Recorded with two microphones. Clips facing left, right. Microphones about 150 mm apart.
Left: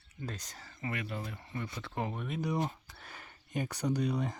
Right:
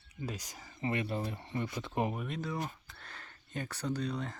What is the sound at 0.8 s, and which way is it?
Speech, 25° right (ahead or behind).